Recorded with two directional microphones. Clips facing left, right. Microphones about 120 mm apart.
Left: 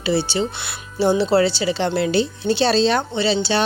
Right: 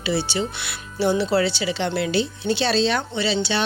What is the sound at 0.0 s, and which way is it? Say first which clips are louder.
A woman's voice: left 3 dB; 30° left (ahead or behind).